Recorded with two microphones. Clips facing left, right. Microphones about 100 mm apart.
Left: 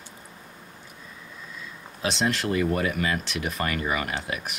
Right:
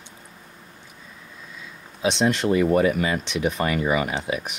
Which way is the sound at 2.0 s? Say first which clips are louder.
Right 5 dB; centre (ahead or behind).